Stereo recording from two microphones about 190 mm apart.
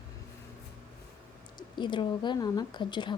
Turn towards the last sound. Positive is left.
turn(degrees=25)  # may be behind; listen again after turning